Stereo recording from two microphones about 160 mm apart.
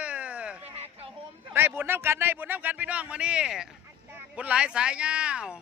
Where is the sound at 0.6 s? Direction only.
40° right (ahead or behind).